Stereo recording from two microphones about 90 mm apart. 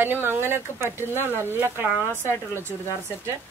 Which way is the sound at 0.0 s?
25° right (ahead or behind).